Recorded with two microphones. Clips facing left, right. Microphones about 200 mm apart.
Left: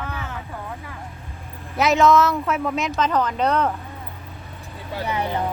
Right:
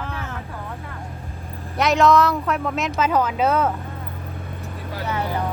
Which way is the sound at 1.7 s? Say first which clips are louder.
Even; centre (ahead or behind).